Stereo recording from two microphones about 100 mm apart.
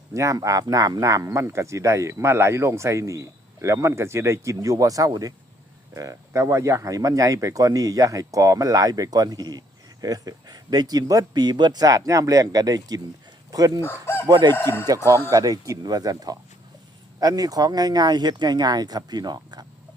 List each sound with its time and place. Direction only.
0.1 s speech: 35° right (ahead or behind)
13.8 s chicken: 25° left (ahead or behind)
14.3 s speech: 45° right (ahead or behind)
14.5 s speech: 25° left (ahead or behind)
15.3 s speech: 35° right (ahead or behind)